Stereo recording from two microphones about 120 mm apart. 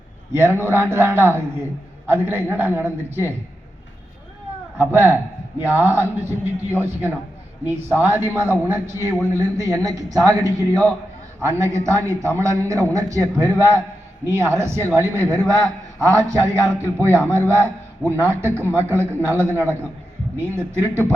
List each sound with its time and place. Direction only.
0.3 s a man's voice: 20° right (ahead or behind)
4.8 s a man's voice: 20° right (ahead or behind)